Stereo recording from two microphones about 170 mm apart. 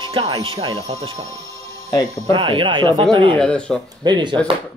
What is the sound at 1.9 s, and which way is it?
Speech, 20° left (ahead or behind).